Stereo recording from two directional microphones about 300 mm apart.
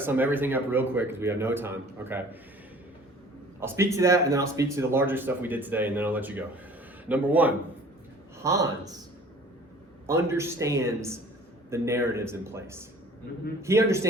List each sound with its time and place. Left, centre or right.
0.0 s speech: centre
3.6 s speech: centre
10.1 s speech: centre